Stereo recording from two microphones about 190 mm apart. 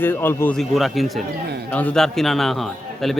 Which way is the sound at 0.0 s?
10° left (ahead or behind).